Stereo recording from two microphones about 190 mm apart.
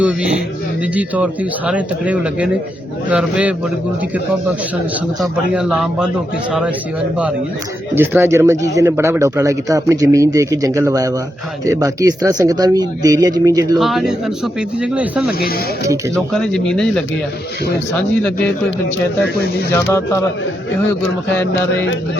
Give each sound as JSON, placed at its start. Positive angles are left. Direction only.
{"t": 0.0, "sound": "speech", "side_deg": -5}
{"t": 5.2, "sound": "speech", "side_deg": -5}
{"t": 7.9, "sound": "speech", "side_deg": -10}
{"t": 13.7, "sound": "speech", "side_deg": 0}
{"t": 15.4, "sound": "speech", "side_deg": 55}
{"t": 16.3, "sound": "speech", "side_deg": 5}
{"t": 19.7, "sound": "speech", "side_deg": 15}